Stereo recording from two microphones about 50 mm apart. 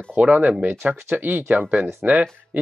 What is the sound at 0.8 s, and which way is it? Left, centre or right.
Speech, right.